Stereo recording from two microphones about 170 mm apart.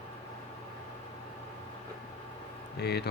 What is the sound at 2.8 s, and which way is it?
Speech, 70° left (ahead or behind).